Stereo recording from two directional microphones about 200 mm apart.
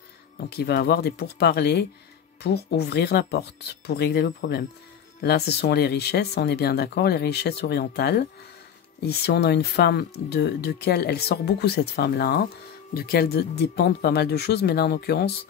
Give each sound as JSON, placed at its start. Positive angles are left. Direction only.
{"t": 0.5, "sound": "speech", "side_deg": 55}